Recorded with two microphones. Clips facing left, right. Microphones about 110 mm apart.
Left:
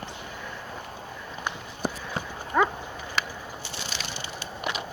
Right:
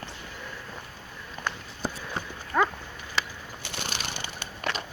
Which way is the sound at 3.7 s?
55° right (ahead or behind).